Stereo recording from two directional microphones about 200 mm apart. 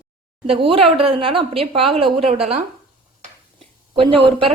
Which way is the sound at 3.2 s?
25° right (ahead or behind).